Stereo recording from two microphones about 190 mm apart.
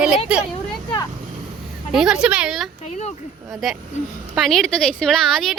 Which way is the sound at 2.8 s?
35° left (ahead or behind).